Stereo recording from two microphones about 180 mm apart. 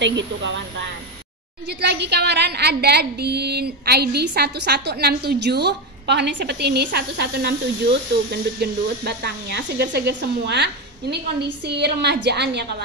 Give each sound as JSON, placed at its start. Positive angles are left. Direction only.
{"t": 0.0, "sound": "a woman's voice", "side_deg": -80}
{"t": 1.7, "sound": "a woman's voice", "side_deg": -65}